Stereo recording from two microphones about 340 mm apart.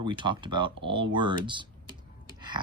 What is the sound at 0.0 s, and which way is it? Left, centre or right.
Speech, centre.